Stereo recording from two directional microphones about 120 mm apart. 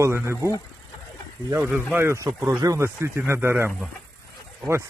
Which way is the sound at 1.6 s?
15° right (ahead or behind).